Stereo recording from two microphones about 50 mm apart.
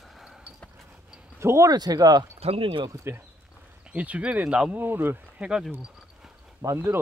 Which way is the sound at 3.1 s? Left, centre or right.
Right.